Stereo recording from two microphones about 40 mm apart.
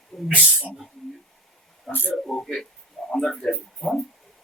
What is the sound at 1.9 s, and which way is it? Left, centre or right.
Speech, left.